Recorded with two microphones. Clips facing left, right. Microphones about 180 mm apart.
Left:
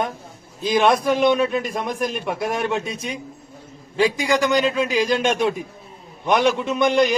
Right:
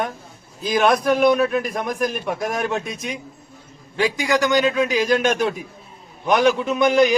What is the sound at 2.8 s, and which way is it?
Speech, 30° left (ahead or behind).